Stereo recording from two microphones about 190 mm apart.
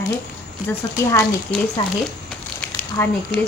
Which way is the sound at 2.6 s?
10° left (ahead or behind).